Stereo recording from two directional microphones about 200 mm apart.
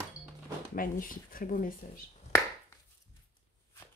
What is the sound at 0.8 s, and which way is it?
Speech, 45° left (ahead or behind).